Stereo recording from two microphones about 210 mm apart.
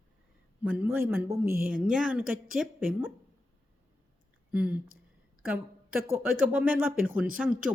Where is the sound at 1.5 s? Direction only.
45° right (ahead or behind).